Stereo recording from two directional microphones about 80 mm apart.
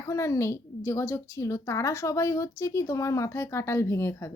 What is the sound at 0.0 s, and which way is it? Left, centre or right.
A woman's voice, left.